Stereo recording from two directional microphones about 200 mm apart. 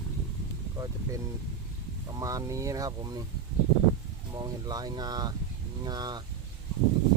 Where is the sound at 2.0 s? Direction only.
15° right (ahead or behind).